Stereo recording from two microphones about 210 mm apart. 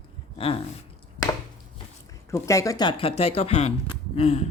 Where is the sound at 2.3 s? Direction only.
15° left (ahead or behind).